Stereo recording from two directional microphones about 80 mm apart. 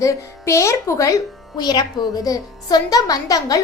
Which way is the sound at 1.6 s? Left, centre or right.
Left.